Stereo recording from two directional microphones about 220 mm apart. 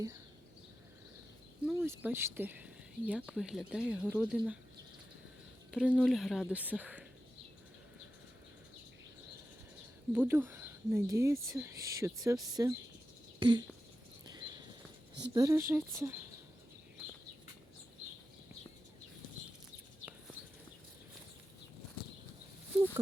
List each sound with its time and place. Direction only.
1.6 s speech: 10° right (ahead or behind)
5.7 s speech: 5° right (ahead or behind)
10.1 s speech: 10° right (ahead or behind)
13.4 s a sound: 20° right (ahead or behind)
15.2 s speech: 15° right (ahead or behind)
22.7 s speech: 5° right (ahead or behind)